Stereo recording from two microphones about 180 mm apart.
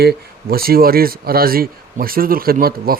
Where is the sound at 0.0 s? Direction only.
60° right (ahead or behind).